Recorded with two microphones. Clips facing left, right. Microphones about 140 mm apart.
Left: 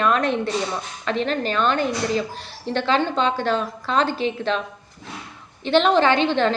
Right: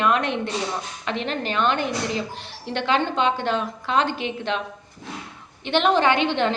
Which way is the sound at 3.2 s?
15° right (ahead or behind).